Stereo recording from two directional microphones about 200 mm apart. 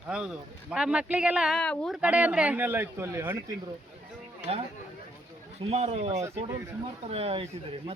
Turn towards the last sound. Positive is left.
turn(degrees=-30)  # may be behind; listen again after turning